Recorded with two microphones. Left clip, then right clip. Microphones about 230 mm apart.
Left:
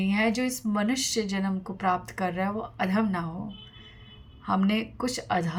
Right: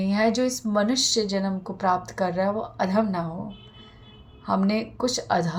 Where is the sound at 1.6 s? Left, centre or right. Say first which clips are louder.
Right 3 dB; left.